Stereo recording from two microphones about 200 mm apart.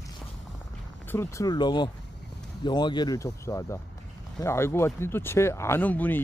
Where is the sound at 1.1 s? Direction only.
15° left (ahead or behind).